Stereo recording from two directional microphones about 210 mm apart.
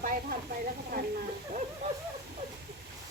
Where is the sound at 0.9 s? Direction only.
45° right (ahead or behind).